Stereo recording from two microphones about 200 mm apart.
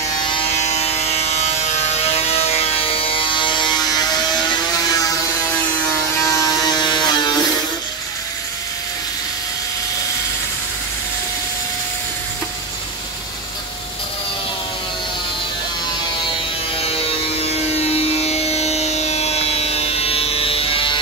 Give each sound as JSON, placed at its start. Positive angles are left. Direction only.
{"t": 0.3, "sound": "a sound", "side_deg": 35}
{"t": 6.1, "sound": "electric shaver", "side_deg": 15}
{"t": 16.7, "sound": "music", "side_deg": 30}